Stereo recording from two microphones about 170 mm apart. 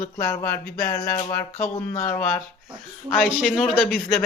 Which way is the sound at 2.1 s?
10° left (ahead or behind).